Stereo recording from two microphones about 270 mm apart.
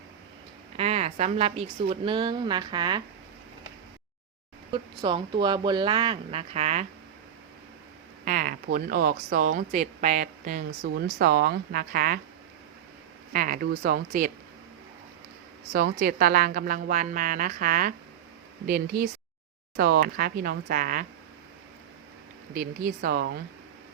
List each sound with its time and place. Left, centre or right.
0.8 s a woman's voice: right
4.7 s a woman's voice: centre
8.2 s speech: right
13.3 s speech: right
15.7 s speech: right
22.5 s speech: right